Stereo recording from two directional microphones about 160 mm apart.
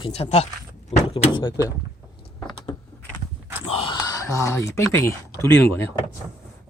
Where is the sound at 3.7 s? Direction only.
35° left (ahead or behind); by 4.5 s 20° left (ahead or behind).